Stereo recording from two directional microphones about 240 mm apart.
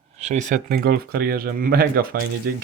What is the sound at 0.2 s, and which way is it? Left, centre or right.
Speech, right.